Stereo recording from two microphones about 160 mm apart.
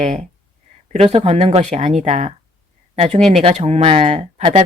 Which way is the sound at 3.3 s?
45° right (ahead or behind).